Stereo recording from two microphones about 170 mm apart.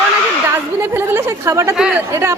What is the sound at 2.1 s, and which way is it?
Speech, 20° right (ahead or behind).